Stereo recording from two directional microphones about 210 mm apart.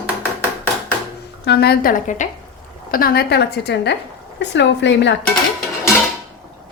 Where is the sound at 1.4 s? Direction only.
50° left (ahead or behind).